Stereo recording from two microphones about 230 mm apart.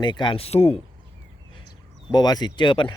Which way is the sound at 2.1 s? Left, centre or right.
Centre.